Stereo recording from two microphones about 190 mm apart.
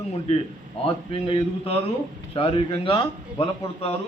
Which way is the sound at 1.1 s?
30° left (ahead or behind).